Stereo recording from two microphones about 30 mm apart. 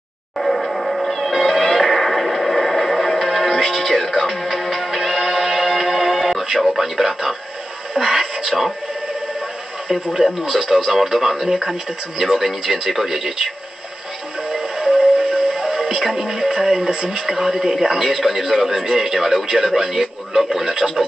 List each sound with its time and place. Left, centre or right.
0.4 s cat: centre
6.6 s radio: centre
8.0 s a sound: centre
8.5 s speech: centre
9.8 s a man's voice: centre
14.5 s music: right
16.2 s speech: centre
17.3 s a man's voice: centre